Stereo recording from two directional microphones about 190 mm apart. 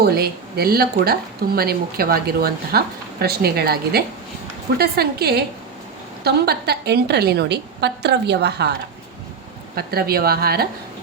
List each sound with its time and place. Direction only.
0.0 s speech: 55° right (ahead or behind)
9.7 s a woman's voice: 55° right (ahead or behind)